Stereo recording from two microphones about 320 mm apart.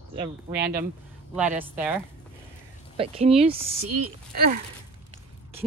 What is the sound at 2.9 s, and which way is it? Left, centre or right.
Speech, centre.